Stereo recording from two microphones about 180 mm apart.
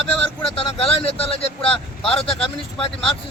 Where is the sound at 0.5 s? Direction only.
30° left (ahead or behind).